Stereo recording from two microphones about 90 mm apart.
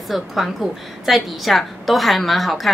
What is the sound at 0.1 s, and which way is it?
A woman's voice, centre (ahead or behind).